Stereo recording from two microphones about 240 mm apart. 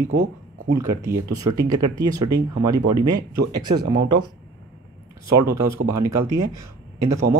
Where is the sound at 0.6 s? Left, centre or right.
Right.